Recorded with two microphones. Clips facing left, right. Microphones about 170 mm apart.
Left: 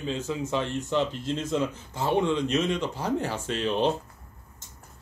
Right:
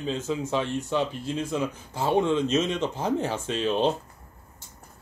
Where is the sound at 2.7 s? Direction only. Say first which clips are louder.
Right 1 dB; 20° right (ahead or behind).